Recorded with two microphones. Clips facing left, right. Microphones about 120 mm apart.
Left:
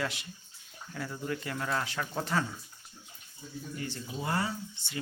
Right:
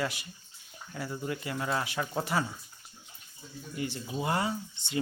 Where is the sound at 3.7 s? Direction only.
10° right (ahead or behind).